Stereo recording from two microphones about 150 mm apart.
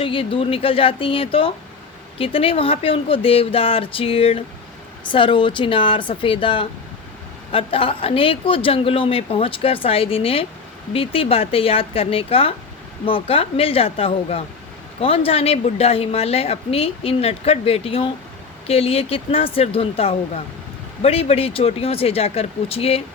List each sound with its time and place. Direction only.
0.0 s a woman's voice: 35° left (ahead or behind)